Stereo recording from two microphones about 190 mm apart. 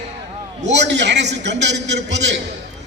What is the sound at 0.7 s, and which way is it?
A man's voice, 65° right (ahead or behind).